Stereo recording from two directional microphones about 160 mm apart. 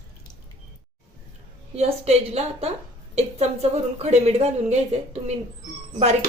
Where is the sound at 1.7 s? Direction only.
40° right (ahead or behind).